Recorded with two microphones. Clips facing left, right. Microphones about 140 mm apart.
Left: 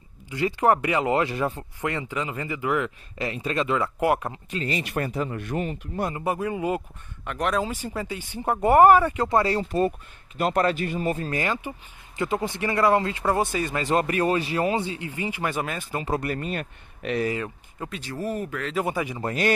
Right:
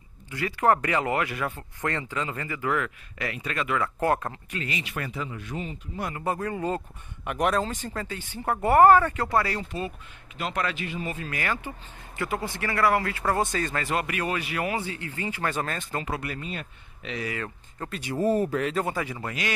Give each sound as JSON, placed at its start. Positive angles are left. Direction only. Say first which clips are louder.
{"t": 0.3, "sound": "speech", "louder": "left 2 dB", "side_deg": 20}
{"t": 1.8, "sound": "speech", "louder": "left 1 dB", "side_deg": 15}
{"t": 4.5, "sound": "speech", "louder": "left 8 dB", "side_deg": 35}
{"t": 6.0, "sound": "speech", "louder": "left 2 dB", "side_deg": 20}
{"t": 7.2, "sound": "speech", "louder": "right 1 dB", "side_deg": -10}
{"t": 7.6, "sound": "speech", "louder": "left 2 dB", "side_deg": 10}
{"t": 9.7, "sound": "speech", "louder": "left 9 dB", "side_deg": 45}
{"t": 11.3, "sound": "speech", "louder": "left 3 dB", "side_deg": 20}
{"t": 13.8, "sound": "speech", "louder": "left 6 dB", "side_deg": 35}
{"t": 16.1, "sound": "speech", "louder": "left 6 dB", "side_deg": 45}
{"t": 17.8, "sound": "speech", "louder": "left 1 dB", "side_deg": 10}
{"t": 18.2, "sound": "speech", "louder": "right 6 dB", "side_deg": -30}
{"t": 18.9, "sound": "speech", "louder": "left 2 dB", "side_deg": 15}
{"t": 19.2, "sound": "speech", "louder": "left 7 dB", "side_deg": 40}